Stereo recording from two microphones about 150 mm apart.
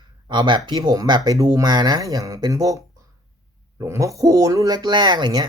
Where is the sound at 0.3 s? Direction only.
30° right (ahead or behind).